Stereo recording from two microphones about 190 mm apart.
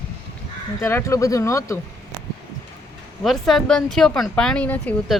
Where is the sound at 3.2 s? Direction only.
Centre (ahead or behind).